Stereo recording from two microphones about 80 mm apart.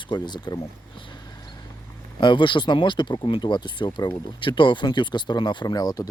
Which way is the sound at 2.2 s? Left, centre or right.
Left.